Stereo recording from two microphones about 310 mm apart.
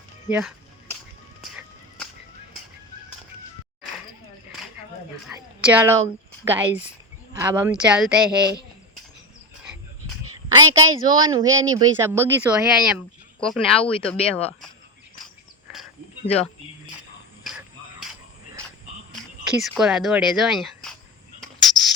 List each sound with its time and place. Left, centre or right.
0.3 s speech: centre
5.5 s speech: centre
10.3 s a woman's voice: centre
16.2 s speech: centre
19.5 s speech: centre